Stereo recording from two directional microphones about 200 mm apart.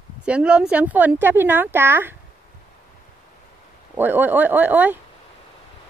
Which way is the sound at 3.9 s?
10° right (ahead or behind).